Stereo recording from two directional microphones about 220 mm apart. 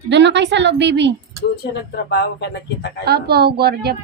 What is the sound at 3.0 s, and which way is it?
Speech, 45° right (ahead or behind).